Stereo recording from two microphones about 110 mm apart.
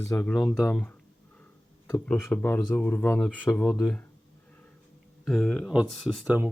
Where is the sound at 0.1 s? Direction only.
20° left (ahead or behind).